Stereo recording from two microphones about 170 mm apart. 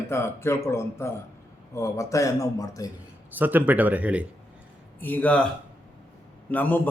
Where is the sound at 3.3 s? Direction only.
10° right (ahead or behind).